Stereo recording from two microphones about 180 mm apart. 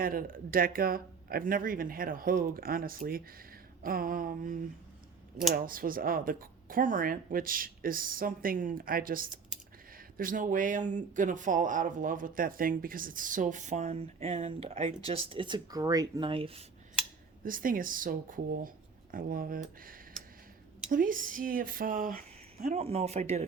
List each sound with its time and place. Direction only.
0.0 s speech: 55° right (ahead or behind)
5.5 s speech: 50° right (ahead or behind); by 16.6 s 30° right (ahead or behind)
17.4 s speech: 50° right (ahead or behind)
20.9 s speech: 50° right (ahead or behind)